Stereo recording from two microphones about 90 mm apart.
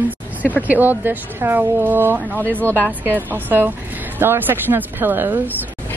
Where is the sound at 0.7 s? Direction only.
20° right (ahead or behind).